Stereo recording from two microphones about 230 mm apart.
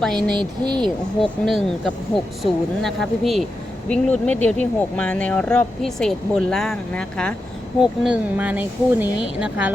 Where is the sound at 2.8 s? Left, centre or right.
Centre.